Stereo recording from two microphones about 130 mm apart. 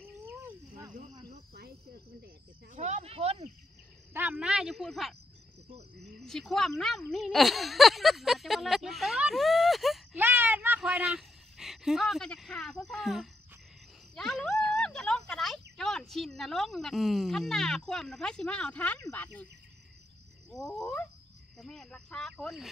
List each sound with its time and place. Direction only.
0.4 s cricket: 15° right (ahead or behind)
2.7 s speech: 65° right (ahead or behind)
4.1 s speech: 15° right (ahead or behind)
10.1 s a sound: 15° right (ahead or behind)
10.8 s speech: 5° right (ahead or behind)
20.4 s a sound: 5° left (ahead or behind)
21.5 s speech: 5° left (ahead or behind)